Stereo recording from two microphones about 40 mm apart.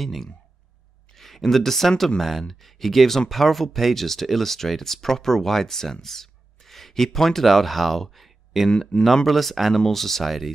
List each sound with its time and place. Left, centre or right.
0.0 s speech: centre
8.6 s speech: centre
9.0 s speech: centre